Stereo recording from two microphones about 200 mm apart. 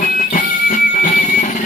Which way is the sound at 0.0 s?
40° left (ahead or behind).